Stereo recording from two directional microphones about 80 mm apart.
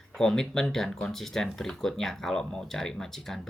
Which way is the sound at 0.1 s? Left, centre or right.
Centre.